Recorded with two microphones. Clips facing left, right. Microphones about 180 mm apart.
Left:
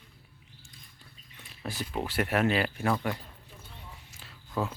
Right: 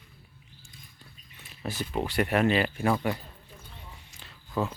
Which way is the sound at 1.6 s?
Centre (ahead or behind).